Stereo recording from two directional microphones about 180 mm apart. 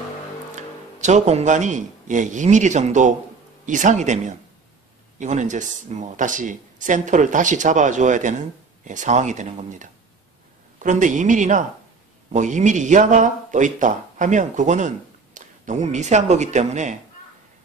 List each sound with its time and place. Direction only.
0.6 s speech: 40° right (ahead or behind)